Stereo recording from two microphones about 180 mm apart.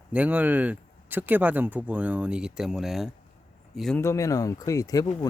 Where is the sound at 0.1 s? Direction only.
10° right (ahead or behind).